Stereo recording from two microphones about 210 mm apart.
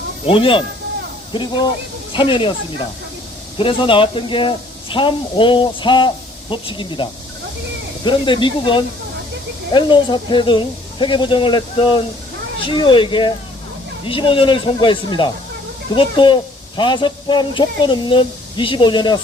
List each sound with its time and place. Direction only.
0.3 s speech: 25° left (ahead or behind)
2.1 s speech: 25° left (ahead or behind)